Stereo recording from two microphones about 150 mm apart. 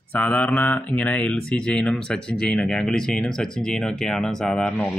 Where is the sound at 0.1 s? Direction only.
10° left (ahead or behind).